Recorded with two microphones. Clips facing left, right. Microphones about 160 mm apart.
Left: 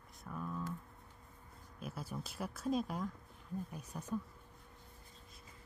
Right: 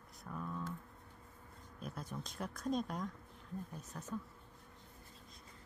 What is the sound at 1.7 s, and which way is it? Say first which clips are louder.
Speech: left 1 dB; 5° left (ahead or behind).